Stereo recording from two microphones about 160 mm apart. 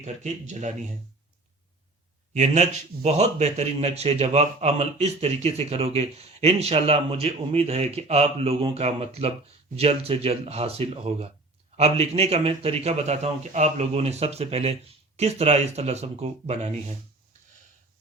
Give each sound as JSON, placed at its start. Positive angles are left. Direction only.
{"t": 0.0, "sound": "speech", "side_deg": -45}
{"t": 2.3, "sound": "speech", "side_deg": -45}